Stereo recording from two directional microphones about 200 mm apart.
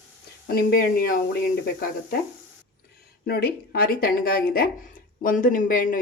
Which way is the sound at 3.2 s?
50° left (ahead or behind).